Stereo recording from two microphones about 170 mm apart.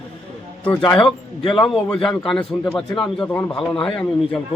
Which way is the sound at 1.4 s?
25° left (ahead or behind).